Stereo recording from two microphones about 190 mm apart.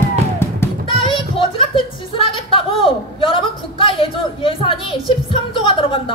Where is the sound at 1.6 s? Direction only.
25° left (ahead or behind).